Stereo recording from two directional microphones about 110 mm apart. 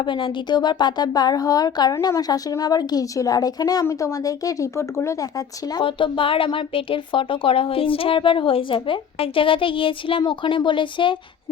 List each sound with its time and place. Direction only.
0.0 s speech: 50° left (ahead or behind); by 5.3 s 25° left (ahead or behind)
5.8 s a woman's voice: 50° left (ahead or behind)